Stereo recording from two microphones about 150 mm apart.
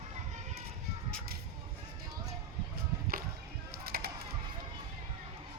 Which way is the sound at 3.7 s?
90° right.